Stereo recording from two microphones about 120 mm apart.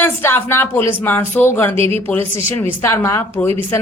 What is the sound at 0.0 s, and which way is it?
A woman's voice, 20° left (ahead or behind).